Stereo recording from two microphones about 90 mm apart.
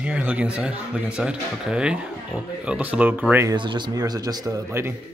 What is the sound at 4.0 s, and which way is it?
Speech, 45° right (ahead or behind).